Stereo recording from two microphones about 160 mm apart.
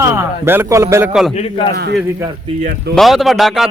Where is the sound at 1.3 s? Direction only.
35° left (ahead or behind).